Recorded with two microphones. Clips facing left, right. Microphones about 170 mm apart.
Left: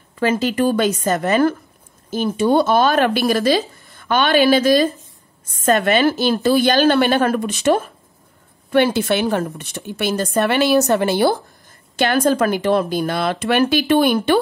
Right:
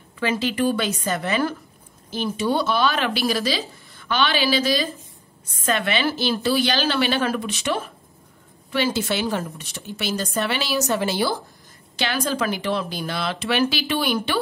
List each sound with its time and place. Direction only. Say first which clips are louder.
0.2 s speech: left 5 dB; 45° left (ahead or behind)
8.7 s a woman's voice: left 7 dB; 60° left (ahead or behind)